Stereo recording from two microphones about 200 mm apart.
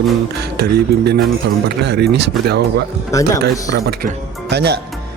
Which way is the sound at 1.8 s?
55° right (ahead or behind).